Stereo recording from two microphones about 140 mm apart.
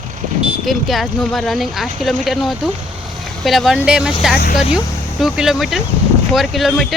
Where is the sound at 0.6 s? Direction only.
Centre (ahead or behind).